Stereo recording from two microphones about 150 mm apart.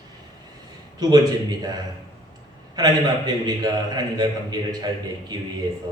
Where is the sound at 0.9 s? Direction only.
25° right (ahead or behind).